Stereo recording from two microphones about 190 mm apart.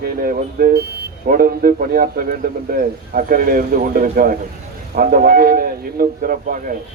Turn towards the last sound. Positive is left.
turn(degrees=-45)  # may be behind; listen again after turning